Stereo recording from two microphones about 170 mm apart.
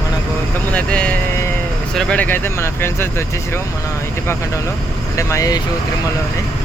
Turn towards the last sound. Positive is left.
turn(degrees=20)  # may be behind; listen again after turning